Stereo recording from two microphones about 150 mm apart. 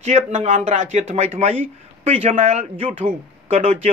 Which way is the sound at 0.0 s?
50° right (ahead or behind).